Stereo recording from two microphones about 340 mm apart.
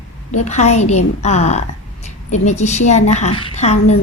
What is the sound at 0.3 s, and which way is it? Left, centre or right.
A woman's voice, centre.